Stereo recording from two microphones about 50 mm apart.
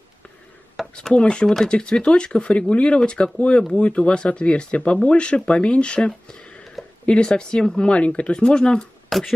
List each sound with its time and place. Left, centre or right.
0.8 s a sound: centre
1.1 s speech: centre
9.1 s beatboxing: centre